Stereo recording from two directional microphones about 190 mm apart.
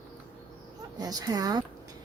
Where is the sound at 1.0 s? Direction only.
20° right (ahead or behind).